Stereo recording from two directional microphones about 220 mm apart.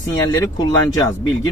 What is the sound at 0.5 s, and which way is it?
Speech, 15° left (ahead or behind).